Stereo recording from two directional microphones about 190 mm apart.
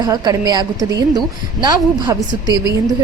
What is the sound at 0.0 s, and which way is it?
A woman's voice, 20° right (ahead or behind).